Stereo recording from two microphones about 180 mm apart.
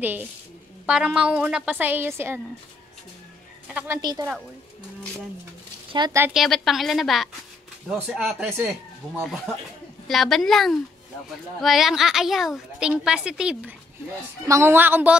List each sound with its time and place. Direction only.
0.8 s a woman's voice: 5° right (ahead or behind)
3.7 s a woman's voice: 15° right (ahead or behind)
5.9 s speech: 25° right (ahead or behind)
6.3 s a woman's voice: centre (ahead or behind)
10.0 s a woman's voice: centre (ahead or behind)